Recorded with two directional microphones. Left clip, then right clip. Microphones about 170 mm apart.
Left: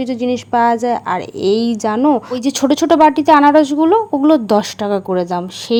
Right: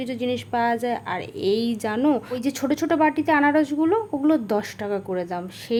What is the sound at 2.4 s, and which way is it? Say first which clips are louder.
A woman's voice: left 10 dB; 35° left (ahead or behind).